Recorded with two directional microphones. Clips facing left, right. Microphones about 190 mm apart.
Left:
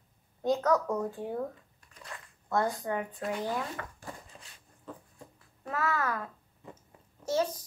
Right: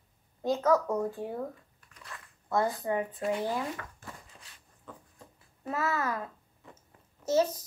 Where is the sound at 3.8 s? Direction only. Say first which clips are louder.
Left 3 dB; 40° left (ahead or behind).